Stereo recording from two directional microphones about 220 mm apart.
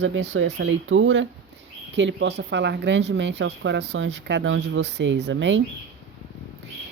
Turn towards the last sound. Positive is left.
turn(degrees=-60)  # may be behind; listen again after turning